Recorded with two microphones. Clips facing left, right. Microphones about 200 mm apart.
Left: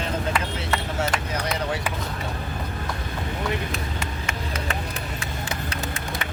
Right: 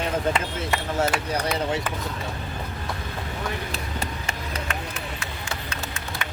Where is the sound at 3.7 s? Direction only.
35° right (ahead or behind).